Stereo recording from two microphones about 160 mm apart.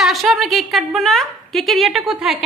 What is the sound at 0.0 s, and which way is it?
A woman's voice, centre (ahead or behind).